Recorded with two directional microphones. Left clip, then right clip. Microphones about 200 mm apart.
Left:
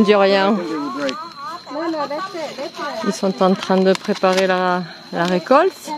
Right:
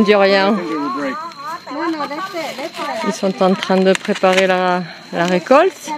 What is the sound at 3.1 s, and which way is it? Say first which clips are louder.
Speech: right 1 dB; 5° left (ahead or behind).